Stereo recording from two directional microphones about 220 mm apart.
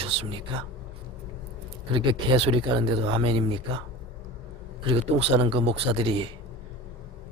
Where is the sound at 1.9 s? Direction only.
25° right (ahead or behind).